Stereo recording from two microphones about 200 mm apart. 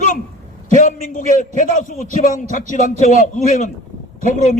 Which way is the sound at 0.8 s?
40° left (ahead or behind).